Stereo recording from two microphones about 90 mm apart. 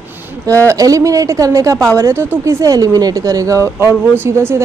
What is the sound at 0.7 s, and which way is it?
A woman's voice, 35° right (ahead or behind).